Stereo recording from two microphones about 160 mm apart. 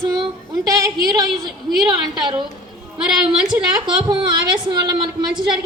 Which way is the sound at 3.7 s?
30° right (ahead or behind).